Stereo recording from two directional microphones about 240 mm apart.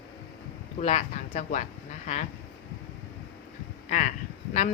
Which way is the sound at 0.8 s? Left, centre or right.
Left.